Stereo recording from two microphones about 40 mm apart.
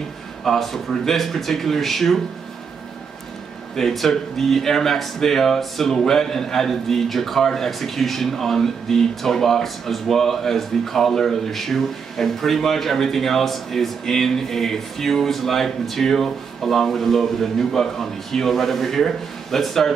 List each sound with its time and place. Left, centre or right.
0.4 s speech: centre
3.7 s speech: centre